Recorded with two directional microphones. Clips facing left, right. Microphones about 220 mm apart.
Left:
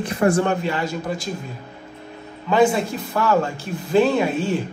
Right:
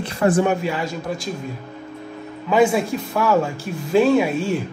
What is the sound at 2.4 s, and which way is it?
A man's voice, 5° right (ahead or behind).